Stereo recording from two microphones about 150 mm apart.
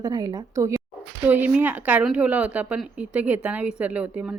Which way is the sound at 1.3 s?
10° right (ahead or behind).